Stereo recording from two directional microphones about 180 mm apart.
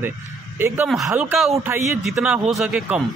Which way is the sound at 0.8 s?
Centre (ahead or behind).